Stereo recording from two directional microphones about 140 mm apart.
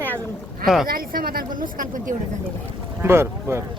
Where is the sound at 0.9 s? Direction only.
90° right.